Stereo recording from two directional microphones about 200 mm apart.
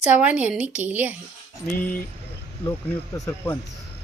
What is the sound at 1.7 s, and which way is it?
Speech, 10° left (ahead or behind).